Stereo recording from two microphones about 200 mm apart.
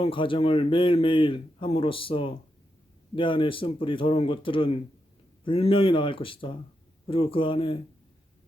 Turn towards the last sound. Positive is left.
turn(degrees=25)  # may be behind; listen again after turning